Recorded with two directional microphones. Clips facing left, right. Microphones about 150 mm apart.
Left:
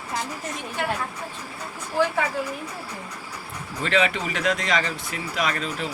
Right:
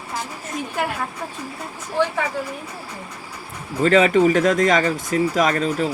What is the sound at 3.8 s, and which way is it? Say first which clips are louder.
Speech: right 9 dB; 40° right (ahead or behind).